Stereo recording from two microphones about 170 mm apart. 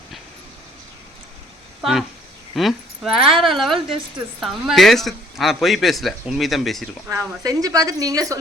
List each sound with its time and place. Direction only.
1.8 s speech: centre (ahead or behind)
7.1 s a woman's voice: 20° right (ahead or behind)